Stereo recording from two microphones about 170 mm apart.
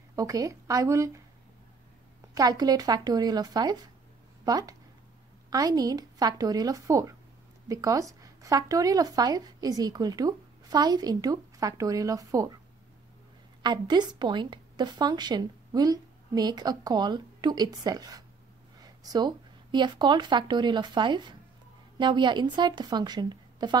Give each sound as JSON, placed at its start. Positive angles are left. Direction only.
{"t": 0.1, "sound": "speech", "side_deg": -20}
{"t": 2.3, "sound": "speech", "side_deg": -20}
{"t": 13.6, "sound": "speech", "side_deg": -25}